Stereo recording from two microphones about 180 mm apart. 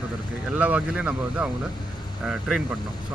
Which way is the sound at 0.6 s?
10° right (ahead or behind).